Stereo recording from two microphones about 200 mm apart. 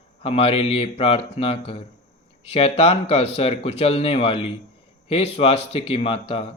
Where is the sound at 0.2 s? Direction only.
30° left (ahead or behind).